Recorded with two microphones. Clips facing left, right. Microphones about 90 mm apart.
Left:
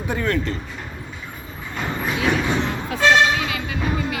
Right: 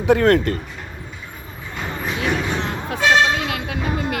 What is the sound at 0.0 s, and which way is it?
Speech, 80° right.